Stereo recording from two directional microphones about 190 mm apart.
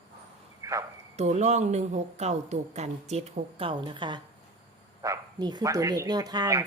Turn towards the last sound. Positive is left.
turn(degrees=-20)  # may be behind; listen again after turning